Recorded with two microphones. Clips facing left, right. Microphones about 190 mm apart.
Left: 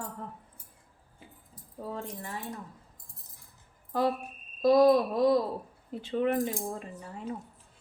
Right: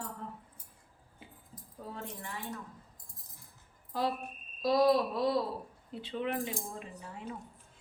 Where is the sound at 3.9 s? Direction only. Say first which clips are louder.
Left 5 dB; 50° left (ahead or behind).